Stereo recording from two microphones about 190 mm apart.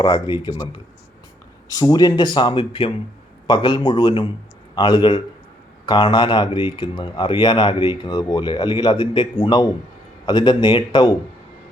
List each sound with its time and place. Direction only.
0.0 s speech: 25° left (ahead or behind)
1.7 s speech: 20° left (ahead or behind)